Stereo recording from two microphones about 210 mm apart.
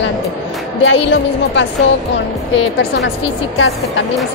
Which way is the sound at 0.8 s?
60° left (ahead or behind).